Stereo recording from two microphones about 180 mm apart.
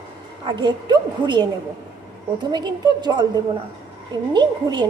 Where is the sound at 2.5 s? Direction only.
25° right (ahead or behind).